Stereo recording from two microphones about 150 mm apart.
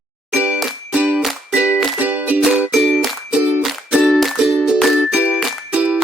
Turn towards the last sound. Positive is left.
turn(degrees=-10)  # may be behind; listen again after turning